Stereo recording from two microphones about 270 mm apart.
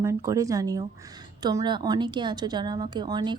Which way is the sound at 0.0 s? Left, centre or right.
Centre.